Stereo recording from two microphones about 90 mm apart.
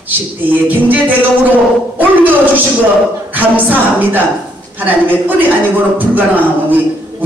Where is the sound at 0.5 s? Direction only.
20° right (ahead or behind).